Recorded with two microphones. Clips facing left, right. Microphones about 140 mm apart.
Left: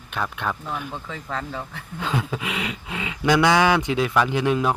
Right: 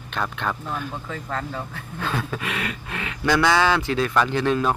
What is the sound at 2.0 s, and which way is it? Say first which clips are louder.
Speech: left 1 dB; 15° left (ahead or behind).